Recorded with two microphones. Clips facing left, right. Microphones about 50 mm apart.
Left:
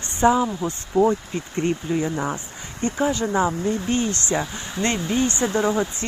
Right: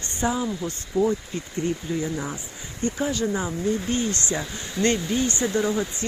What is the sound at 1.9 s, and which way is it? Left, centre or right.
Speech, left.